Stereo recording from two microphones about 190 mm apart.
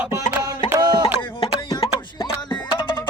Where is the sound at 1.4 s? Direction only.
25° left (ahead or behind).